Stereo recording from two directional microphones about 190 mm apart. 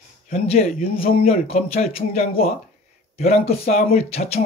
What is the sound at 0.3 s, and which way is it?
Speech, 30° left (ahead or behind).